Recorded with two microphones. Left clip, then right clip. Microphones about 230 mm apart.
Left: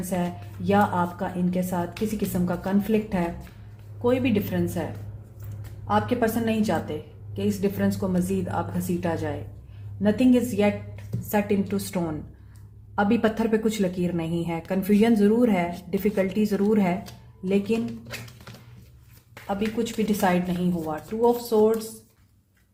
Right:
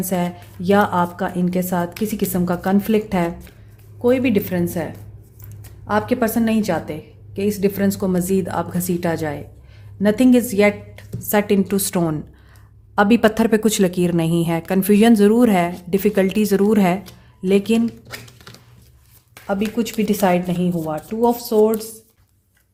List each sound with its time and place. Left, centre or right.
0.1 s speech: right
5.9 s speech: right
19.5 s speech: right